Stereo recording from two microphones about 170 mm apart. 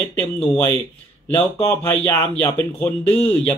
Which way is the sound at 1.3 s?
10° left (ahead or behind).